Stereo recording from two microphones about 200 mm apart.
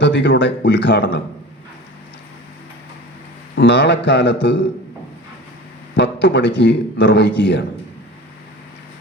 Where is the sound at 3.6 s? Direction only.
60° left (ahead or behind).